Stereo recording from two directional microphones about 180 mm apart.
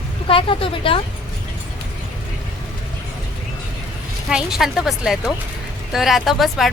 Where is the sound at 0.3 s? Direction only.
30° left (ahead or behind).